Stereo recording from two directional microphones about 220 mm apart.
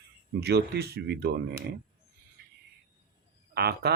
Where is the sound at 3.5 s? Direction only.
45° right (ahead or behind).